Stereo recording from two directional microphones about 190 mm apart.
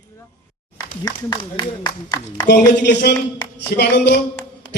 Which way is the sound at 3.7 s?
60° left (ahead or behind).